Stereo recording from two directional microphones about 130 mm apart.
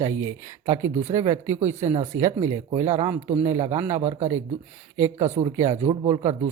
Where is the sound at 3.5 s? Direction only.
60° right (ahead or behind).